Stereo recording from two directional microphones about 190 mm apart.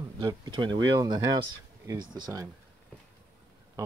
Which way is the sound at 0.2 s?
25° right (ahead or behind).